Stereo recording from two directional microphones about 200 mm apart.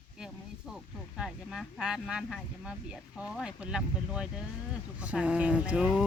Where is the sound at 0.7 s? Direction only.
Centre (ahead or behind).